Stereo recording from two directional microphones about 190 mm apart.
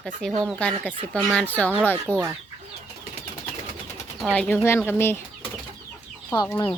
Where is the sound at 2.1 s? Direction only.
10° right (ahead or behind).